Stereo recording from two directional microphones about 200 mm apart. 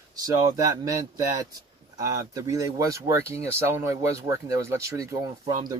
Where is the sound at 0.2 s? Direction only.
15° right (ahead or behind).